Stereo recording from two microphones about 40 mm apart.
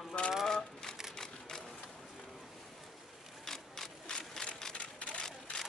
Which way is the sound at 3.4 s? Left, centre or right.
Centre.